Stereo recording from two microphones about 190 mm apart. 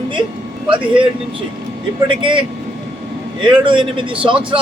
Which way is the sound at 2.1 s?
25° right (ahead or behind).